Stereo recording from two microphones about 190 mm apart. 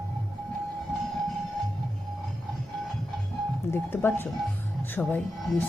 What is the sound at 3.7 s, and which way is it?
Speech, 10° left (ahead or behind).